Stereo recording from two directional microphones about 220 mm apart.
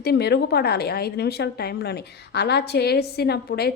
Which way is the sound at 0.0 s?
45° left (ahead or behind).